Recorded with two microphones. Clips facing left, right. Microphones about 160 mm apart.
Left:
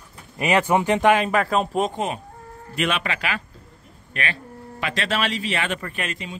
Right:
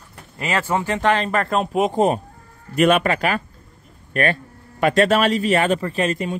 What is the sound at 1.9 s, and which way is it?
A man's voice, 40° right (ahead or behind).